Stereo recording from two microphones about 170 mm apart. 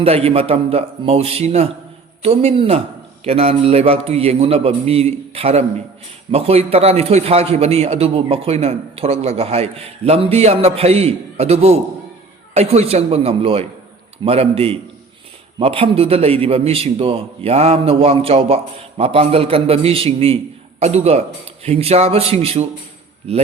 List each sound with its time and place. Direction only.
0.0 s a man's voice: 35° right (ahead or behind)